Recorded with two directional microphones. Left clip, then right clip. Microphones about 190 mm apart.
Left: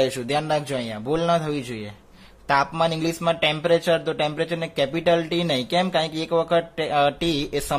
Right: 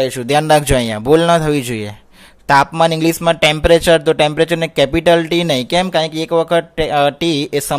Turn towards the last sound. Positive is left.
turn(degrees=-25)  # may be behind; listen again after turning